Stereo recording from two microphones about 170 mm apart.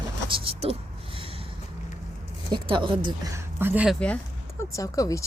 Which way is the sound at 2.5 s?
30° right (ahead or behind).